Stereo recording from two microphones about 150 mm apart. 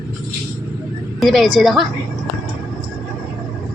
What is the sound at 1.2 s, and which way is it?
Speech, centre (ahead or behind).